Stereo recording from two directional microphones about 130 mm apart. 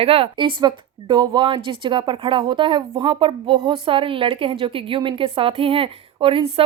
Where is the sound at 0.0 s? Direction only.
50° right (ahead or behind).